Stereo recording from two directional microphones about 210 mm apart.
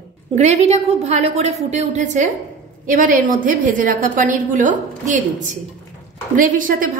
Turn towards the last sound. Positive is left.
turn(degrees=-40)  # may be behind; listen again after turning